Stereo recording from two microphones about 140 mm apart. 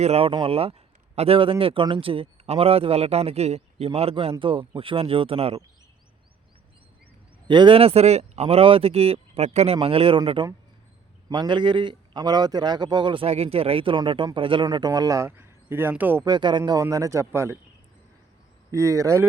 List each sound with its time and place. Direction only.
0.0 s speech: 45° right (ahead or behind)
7.4 s a man's voice: 35° right (ahead or behind); by 16.2 s 15° right (ahead or behind)
16.2 s speech: 30° right (ahead or behind)
18.7 s speech: 25° right (ahead or behind)